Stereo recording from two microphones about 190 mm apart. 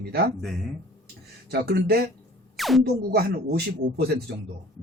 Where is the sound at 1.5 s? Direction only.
60° right (ahead or behind).